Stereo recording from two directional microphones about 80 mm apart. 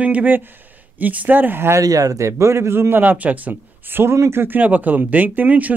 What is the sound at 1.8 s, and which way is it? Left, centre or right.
A man's voice, right.